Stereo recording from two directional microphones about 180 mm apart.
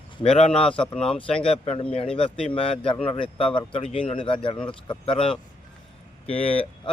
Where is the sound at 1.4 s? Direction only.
30° left (ahead or behind).